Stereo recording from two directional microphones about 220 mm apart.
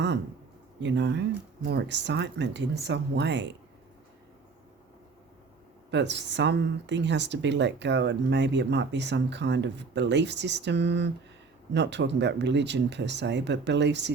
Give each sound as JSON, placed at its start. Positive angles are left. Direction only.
{"t": 0.8, "sound": "speech", "side_deg": -55}
{"t": 5.9, "sound": "speech", "side_deg": -50}